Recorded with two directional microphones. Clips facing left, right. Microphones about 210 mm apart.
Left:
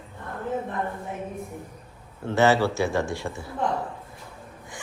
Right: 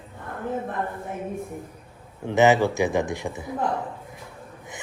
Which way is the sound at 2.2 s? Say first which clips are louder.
Right 2 dB; 15° right (ahead or behind).